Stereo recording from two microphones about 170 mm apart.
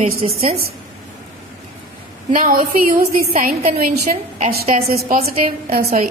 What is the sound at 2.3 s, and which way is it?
A woman's voice, 55° right (ahead or behind).